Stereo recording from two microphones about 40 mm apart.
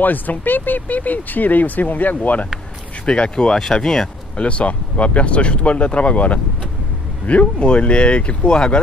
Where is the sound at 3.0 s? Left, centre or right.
Left.